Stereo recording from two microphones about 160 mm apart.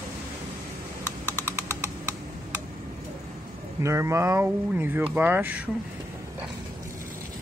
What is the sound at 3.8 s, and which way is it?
Speech, 15° right (ahead or behind).